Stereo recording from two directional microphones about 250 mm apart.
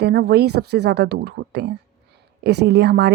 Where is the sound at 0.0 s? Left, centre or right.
Right.